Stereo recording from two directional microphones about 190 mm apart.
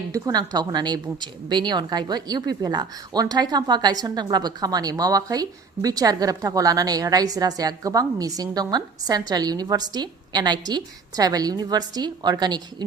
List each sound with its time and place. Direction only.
0.1 s a woman's voice: 20° right (ahead or behind)